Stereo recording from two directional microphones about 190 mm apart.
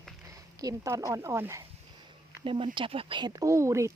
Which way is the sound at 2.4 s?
25° right (ahead or behind).